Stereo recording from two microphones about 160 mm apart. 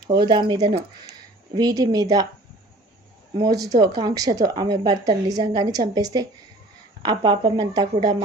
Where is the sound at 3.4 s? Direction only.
25° right (ahead or behind).